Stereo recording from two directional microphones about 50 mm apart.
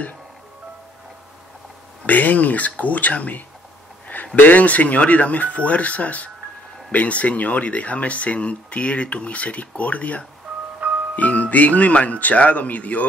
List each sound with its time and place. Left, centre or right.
2.0 s speech: left
10.8 s music: right
11.1 s speech: left